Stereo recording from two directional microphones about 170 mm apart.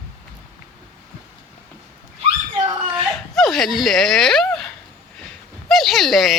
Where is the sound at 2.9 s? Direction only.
Centre (ahead or behind).